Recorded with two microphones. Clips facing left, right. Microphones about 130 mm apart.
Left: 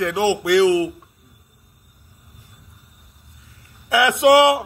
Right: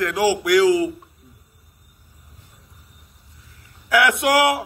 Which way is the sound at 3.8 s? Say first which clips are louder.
Left 3 dB; 25° left (ahead or behind).